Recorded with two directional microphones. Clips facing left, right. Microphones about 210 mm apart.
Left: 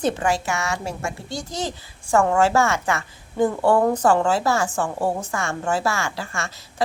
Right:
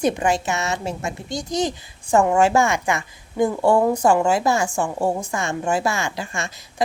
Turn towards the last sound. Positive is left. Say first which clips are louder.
# right 1 dB
turn(degrees=-15)  # may be behind; listen again after turning